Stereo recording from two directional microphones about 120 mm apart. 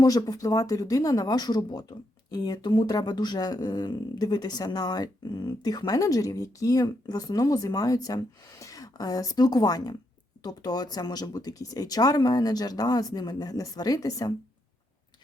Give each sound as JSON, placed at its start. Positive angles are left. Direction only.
{"t": 0.0, "sound": "speech", "side_deg": 30}